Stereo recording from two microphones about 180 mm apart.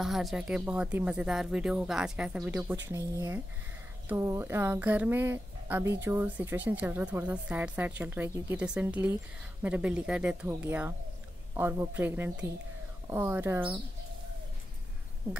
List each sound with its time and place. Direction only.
0.0 s a woman's voice: centre (ahead or behind)